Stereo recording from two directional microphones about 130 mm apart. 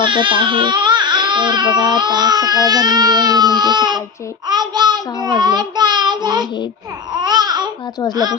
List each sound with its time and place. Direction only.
0.0 s speech: 40° right (ahead or behind)
4.4 s child singing: 30° right (ahead or behind)
7.2 s babbling: 30° right (ahead or behind)
8.1 s speech: 30° right (ahead or behind)